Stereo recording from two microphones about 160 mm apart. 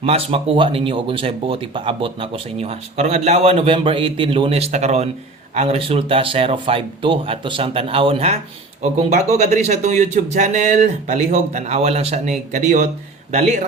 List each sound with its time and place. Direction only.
0.0 s speech: 40° right (ahead or behind)